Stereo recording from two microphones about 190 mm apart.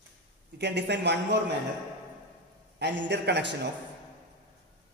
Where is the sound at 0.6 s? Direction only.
65° right (ahead or behind).